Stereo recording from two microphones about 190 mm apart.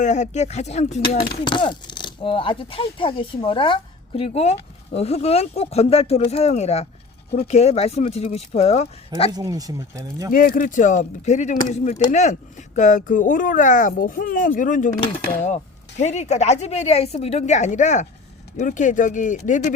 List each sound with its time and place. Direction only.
0.0 s speech: 40° left (ahead or behind)
1.3 s speech: 25° left (ahead or behind)
9.3 s speech: 20° right (ahead or behind)
10.3 s speech: 45° left (ahead or behind)